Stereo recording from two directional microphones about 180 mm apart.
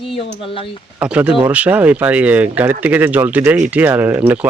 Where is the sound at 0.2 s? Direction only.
30° left (ahead or behind).